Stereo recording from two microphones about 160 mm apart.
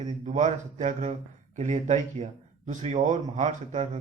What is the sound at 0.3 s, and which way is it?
Speech, 50° right (ahead or behind).